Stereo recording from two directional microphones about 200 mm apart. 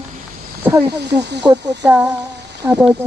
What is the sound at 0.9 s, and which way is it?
Speech, 60° right (ahead or behind).